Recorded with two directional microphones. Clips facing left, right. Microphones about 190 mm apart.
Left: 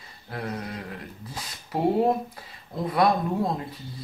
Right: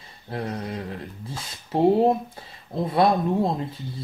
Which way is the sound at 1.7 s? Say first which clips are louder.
Right 4 dB; 25° right (ahead or behind).